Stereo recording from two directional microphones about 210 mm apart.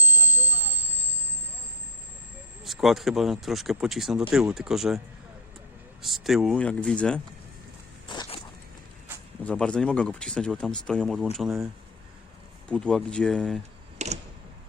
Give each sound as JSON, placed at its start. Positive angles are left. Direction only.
{"t": 0.0, "sound": "vehicle", "side_deg": -10}
{"t": 2.6, "sound": "speech", "side_deg": 0}
{"t": 6.0, "sound": "speech", "side_deg": 0}
{"t": 8.0, "sound": "biting", "side_deg": 20}
{"t": 9.4, "sound": "speech", "side_deg": 5}
{"t": 14.0, "sound": "tick-tock", "side_deg": -30}